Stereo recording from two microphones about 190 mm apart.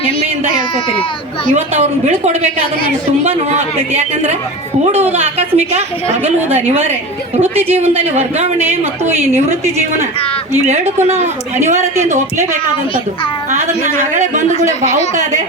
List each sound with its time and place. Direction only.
1.8 s a woman's voice: 35° right (ahead or behind)
5.4 s a woman's voice: 35° right (ahead or behind)
7.4 s a woman's voice: 10° right (ahead or behind)
7.8 s a woman's voice: 35° right (ahead or behind)
8.8 s a woman's voice: 10° right (ahead or behind)
10.7 s a woman's voice: 35° right (ahead or behind)
13.5 s a woman's voice: 40° right (ahead or behind)